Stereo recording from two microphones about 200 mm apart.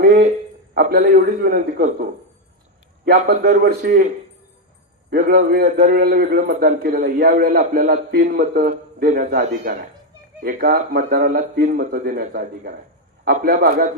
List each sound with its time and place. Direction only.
0.0 s a sound: 45° right (ahead or behind)
0.7 s a man's voice: 50° right (ahead or behind)
5.1 s a man's voice: 45° right (ahead or behind)